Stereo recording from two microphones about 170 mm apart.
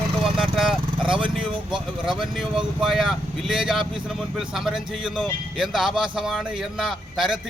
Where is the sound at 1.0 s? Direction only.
30° right (ahead or behind).